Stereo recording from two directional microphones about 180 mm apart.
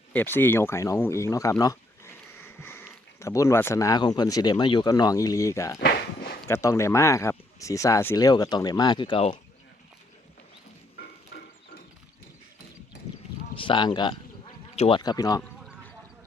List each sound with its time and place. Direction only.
0.1 s speech: 10° left (ahead or behind)
5.8 s walk: 60° left (ahead or behind)
6.5 s speech: 15° left (ahead or behind)
11.3 s a sound: 60° left (ahead or behind)
13.6 s speech: 25° left (ahead or behind)